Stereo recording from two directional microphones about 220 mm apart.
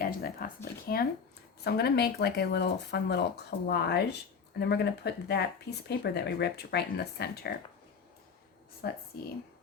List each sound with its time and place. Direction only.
0.0 s speech: 40° left (ahead or behind)
8.8 s speech: 45° left (ahead or behind)